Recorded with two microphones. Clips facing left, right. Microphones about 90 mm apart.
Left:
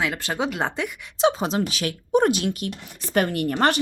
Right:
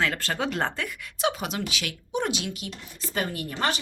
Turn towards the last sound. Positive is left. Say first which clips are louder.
# left 7 dB
turn(degrees=60)  # may be behind; listen again after turning